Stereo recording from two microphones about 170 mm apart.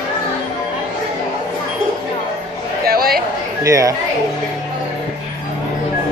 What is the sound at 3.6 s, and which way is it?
Speech, 20° right (ahead or behind).